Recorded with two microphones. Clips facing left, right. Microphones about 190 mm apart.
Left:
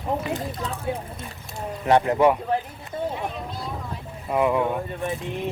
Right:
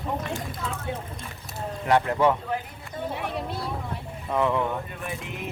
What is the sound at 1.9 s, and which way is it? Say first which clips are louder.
Speech: left 3 dB; 20° left (ahead or behind).